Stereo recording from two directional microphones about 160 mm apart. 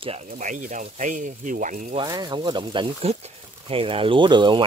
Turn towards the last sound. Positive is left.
turn(degrees=-30)  # may be behind; listen again after turning